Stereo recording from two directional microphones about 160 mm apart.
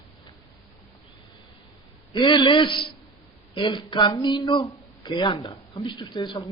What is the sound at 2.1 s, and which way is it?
Speech, 30° left (ahead or behind).